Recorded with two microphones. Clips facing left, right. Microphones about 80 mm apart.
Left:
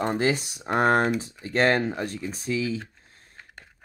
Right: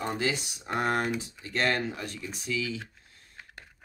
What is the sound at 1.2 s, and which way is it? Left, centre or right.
Speech, left.